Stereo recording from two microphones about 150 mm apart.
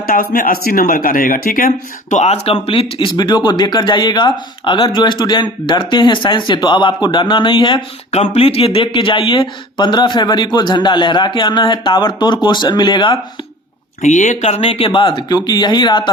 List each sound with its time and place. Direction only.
0.1 s a man's voice: 70° left (ahead or behind); by 13.1 s 30° left (ahead or behind)
14.0 s speech: 55° left (ahead or behind); by 16.0 s 30° left (ahead or behind)